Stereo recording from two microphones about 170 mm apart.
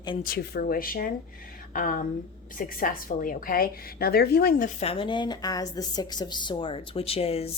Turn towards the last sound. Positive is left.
turn(degrees=35)  # may be behind; listen again after turning